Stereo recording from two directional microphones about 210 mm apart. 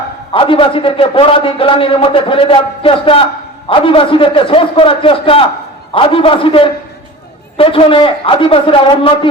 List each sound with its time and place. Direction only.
0.3 s a man's voice: 25° left (ahead or behind)